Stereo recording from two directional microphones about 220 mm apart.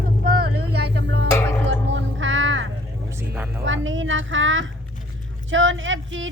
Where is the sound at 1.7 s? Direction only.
55° right (ahead or behind).